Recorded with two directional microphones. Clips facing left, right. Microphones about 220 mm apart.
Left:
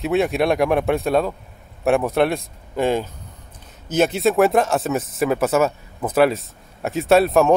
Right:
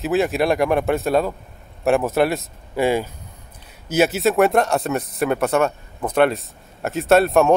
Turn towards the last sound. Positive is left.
turn(degrees=0)  # may be behind; listen again after turning